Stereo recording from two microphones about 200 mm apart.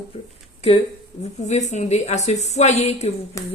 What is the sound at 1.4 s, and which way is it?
A woman's voice, 35° left (ahead or behind).